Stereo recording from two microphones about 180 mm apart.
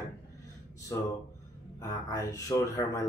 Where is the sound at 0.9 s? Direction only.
15° left (ahead or behind).